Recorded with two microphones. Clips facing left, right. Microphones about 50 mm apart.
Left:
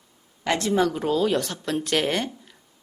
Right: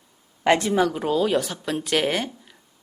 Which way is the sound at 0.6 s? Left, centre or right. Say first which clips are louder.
Right 1 dB; centre.